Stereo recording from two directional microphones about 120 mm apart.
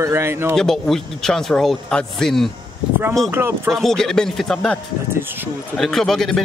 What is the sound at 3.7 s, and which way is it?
A man's voice, 5° left (ahead or behind).